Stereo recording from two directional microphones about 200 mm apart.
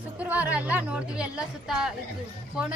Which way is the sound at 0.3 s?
10° right (ahead or behind).